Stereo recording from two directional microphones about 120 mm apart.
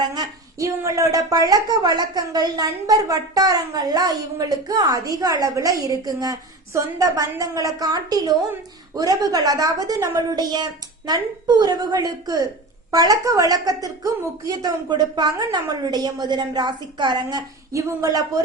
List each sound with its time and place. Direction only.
0.1 s a woman's voice: 30° right (ahead or behind)